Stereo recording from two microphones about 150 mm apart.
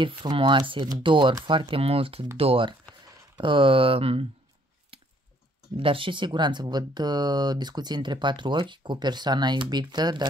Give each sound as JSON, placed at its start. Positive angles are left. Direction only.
{"t": 0.0, "sound": "speech", "side_deg": -35}
{"t": 4.9, "sound": "squish", "side_deg": -40}
{"t": 5.8, "sound": "speech", "side_deg": -35}